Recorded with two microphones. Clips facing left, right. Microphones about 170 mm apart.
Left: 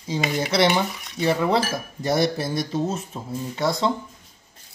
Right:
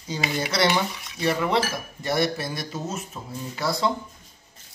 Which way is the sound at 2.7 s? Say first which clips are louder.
Left 6 dB; 30° left (ahead or behind).